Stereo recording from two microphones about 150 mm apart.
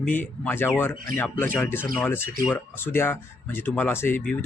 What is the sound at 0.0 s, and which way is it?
Speech, 10° left (ahead or behind).